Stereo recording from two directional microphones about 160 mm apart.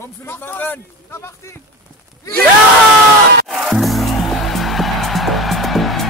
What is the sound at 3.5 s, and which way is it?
Music, centre (ahead or behind).